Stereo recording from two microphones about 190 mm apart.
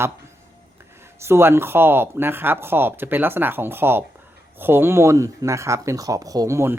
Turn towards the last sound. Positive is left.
turn(degrees=-15)  # may be behind; listen again after turning